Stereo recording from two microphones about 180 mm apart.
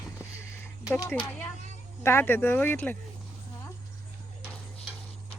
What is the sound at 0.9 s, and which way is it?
Speech, 10° left (ahead or behind).